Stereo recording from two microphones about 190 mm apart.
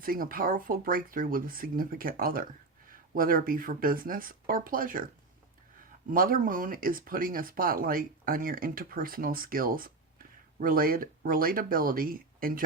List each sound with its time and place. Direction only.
0.0 s speech: 50° right (ahead or behind)
6.1 s speech: 50° right (ahead or behind)